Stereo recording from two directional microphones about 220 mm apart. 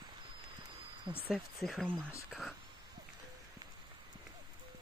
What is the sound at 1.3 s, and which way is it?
Speech, centre (ahead or behind).